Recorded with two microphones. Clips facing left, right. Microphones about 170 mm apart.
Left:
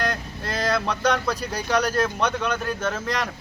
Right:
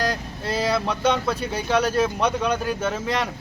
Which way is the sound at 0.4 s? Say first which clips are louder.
Right 2 dB; 5° right (ahead or behind).